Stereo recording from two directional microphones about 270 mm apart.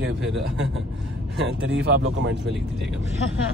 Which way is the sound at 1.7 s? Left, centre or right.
Right.